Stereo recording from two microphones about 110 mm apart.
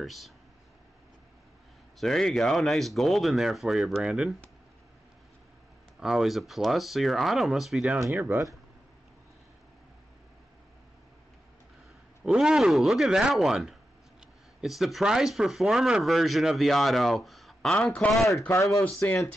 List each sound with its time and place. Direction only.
0.0 s speech: centre (ahead or behind)
2.0 s speech: 5° left (ahead or behind)
5.9 s speech: 5° right (ahead or behind)
8.1 s speech: 20° right (ahead or behind)
12.2 s speech: 5° right (ahead or behind)
18.9 s speech: 25° left (ahead or behind)